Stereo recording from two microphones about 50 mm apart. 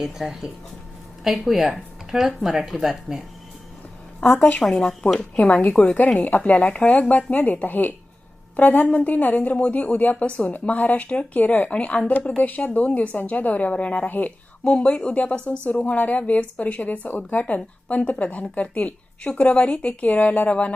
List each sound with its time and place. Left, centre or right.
0.0 s speech: centre
4.2 s a woman's voice: left
4.6 s speech: centre
5.8 s a woman's voice: left
10.5 s a woman's voice: left
14.6 s a woman's voice: left